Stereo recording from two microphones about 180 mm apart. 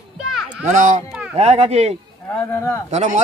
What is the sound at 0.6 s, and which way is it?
Speech, 45° right (ahead or behind).